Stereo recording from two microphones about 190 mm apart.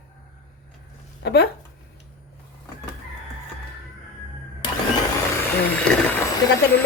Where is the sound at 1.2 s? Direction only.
60° left (ahead or behind).